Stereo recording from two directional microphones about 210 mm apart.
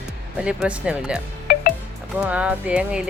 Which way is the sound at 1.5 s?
45° left (ahead or behind).